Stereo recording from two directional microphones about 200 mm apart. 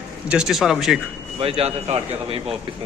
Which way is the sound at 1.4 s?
30° right (ahead or behind).